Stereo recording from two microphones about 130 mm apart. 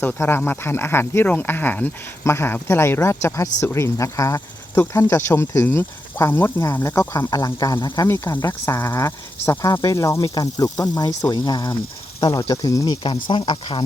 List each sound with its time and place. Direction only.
0.0 s speech: 15° left (ahead or behind); by 8.0 s 30° left (ahead or behind)
8.0 s speech: 20° left (ahead or behind); by 13.8 s 35° left (ahead or behind)